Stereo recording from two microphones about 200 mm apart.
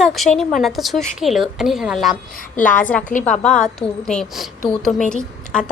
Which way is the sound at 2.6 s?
40° left (ahead or behind).